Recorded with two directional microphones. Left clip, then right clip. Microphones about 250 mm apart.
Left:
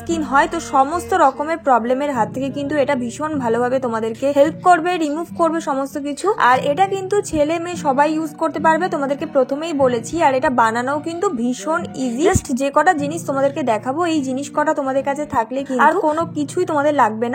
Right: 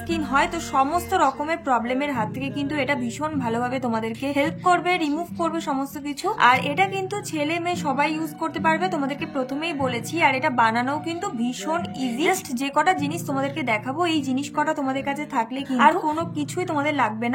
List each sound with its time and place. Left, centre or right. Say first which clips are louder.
0.1 s a woman's voice: left 6 dB; centre